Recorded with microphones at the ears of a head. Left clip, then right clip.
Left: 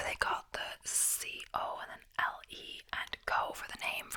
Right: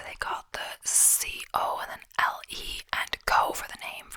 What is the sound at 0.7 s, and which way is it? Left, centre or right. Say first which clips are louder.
Whispering: right 10 dB; right.